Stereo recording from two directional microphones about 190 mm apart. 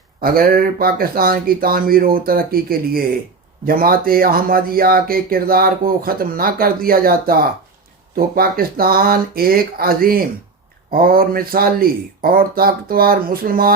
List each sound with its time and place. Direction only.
0.2 s speech: 50° right (ahead or behind)